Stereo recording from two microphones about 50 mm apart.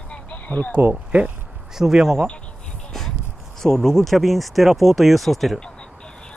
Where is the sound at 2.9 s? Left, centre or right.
Centre.